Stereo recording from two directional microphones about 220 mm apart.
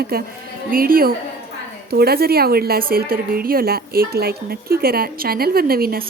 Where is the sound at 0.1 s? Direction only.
45° right (ahead or behind).